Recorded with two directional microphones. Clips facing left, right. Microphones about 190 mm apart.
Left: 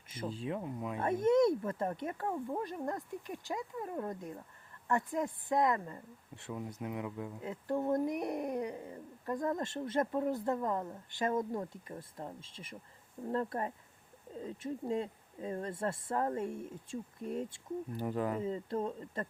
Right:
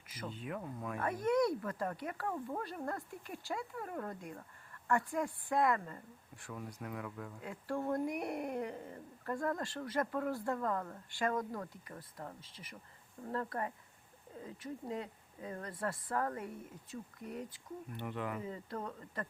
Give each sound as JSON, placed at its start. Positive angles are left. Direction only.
{"t": 0.1, "sound": "speech", "side_deg": 30}
{"t": 17.9, "sound": "speech", "side_deg": 40}